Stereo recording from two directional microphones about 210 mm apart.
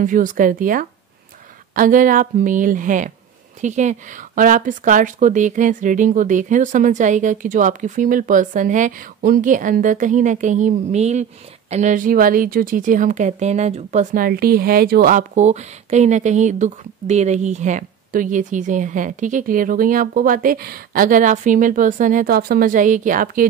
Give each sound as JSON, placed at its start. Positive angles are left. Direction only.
{"t": 0.0, "sound": "a woman's voice", "side_deg": -40}